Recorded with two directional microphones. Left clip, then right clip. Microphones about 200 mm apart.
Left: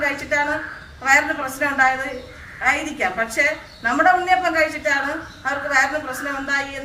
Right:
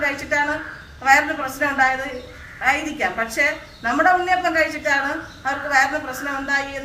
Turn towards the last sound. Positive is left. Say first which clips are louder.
# even
turn(degrees=0)  # may be behind; listen again after turning